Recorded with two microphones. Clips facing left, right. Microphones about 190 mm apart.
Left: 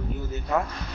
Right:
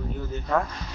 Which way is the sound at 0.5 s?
10° left (ahead or behind).